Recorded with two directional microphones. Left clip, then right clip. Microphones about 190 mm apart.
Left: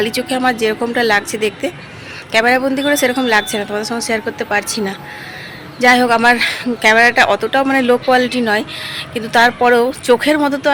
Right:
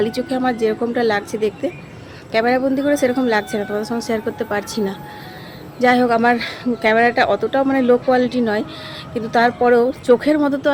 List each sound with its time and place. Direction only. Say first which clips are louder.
0.0 s speech: left 4 dB; 10° right (ahead or behind)